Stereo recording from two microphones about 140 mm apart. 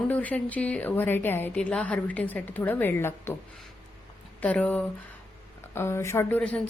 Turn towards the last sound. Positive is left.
turn(degrees=10)  # may be behind; listen again after turning